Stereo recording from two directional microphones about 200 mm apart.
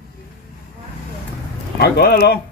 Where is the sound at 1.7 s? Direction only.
50° left (ahead or behind).